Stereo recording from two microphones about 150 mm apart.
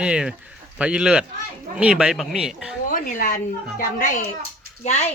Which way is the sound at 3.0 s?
65° left (ahead or behind).